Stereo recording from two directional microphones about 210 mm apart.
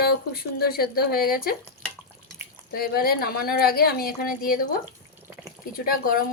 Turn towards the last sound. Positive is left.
turn(degrees=45)  # may be behind; listen again after turning